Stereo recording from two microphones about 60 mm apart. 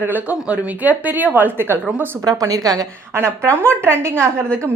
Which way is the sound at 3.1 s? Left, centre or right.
Right.